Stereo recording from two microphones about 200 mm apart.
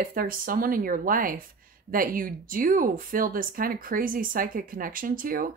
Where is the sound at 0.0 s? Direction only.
45° right (ahead or behind).